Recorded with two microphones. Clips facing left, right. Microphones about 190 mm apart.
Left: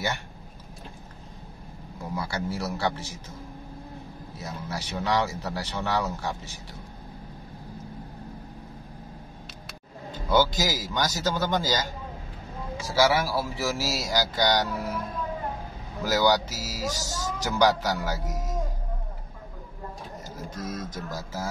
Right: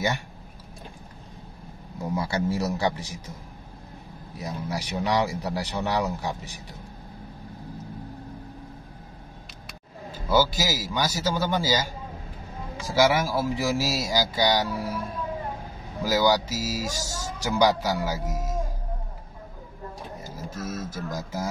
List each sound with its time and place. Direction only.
2.1 s speech: 20° right (ahead or behind)
4.4 s speech: 15° right (ahead or behind)
10.1 s speech: 10° right (ahead or behind)
20.2 s speech: 10° right (ahead or behind)